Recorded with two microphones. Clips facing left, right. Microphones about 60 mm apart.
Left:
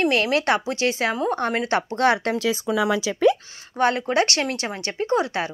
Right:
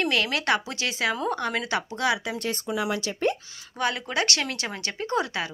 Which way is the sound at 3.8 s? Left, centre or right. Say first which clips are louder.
Left 7 dB; left.